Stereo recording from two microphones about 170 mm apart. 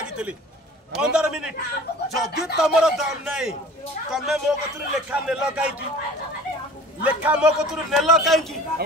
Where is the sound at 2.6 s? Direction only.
5° right (ahead or behind).